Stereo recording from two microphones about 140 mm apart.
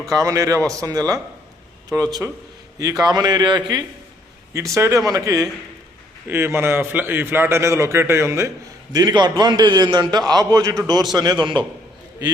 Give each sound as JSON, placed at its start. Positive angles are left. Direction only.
{"t": 0.1, "sound": "a man's voice", "side_deg": -25}